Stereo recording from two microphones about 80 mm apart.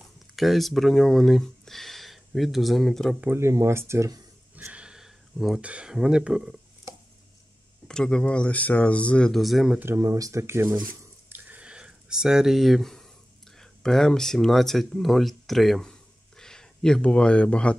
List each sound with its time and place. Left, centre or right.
0.4 s speech: centre
3.2 s speech: right
4.6 s a sound: centre
5.6 s speech: centre
7.9 s speech: centre
9.4 s speech: centre
9.9 s speech: right
11.2 s a sound: right; by 13.1 s centre
13.6 s speech: centre